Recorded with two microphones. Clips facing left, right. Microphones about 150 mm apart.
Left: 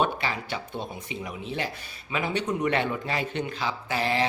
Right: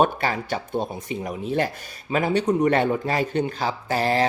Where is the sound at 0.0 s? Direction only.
45° right (ahead or behind).